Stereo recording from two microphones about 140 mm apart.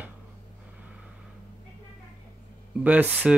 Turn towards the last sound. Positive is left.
turn(degrees=-10)  # may be behind; listen again after turning